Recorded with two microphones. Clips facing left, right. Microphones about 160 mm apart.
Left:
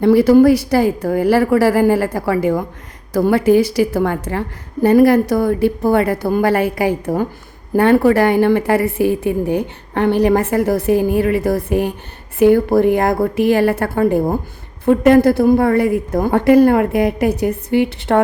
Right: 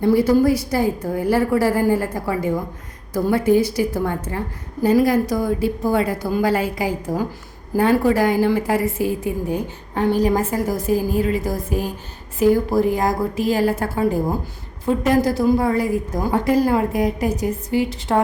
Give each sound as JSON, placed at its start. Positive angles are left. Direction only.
{"t": 0.0, "sound": "a woman's voice", "side_deg": 75}